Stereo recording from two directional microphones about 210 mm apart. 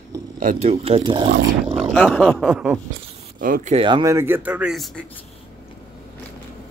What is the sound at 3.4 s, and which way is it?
Speech, 40° right (ahead or behind).